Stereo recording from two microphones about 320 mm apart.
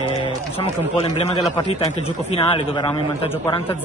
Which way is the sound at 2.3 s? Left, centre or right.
Centre.